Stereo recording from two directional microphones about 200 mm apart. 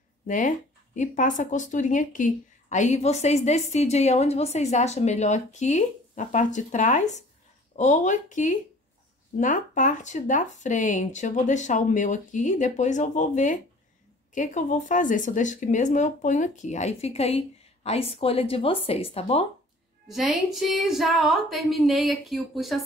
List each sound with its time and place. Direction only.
0.3 s speech: 40° left (ahead or behind)
20.1 s a woman's voice: centre (ahead or behind)